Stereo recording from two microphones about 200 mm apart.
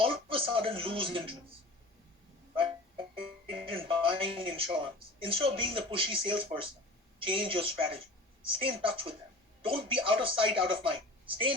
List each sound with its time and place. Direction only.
0.0 s speech: 25° right (ahead or behind)
3.4 s a woman's voice: 25° right (ahead or behind)